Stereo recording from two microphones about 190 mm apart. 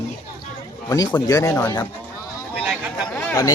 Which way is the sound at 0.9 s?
20° left (ahead or behind).